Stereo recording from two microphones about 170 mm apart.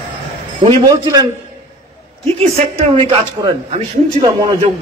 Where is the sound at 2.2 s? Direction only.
35° right (ahead or behind).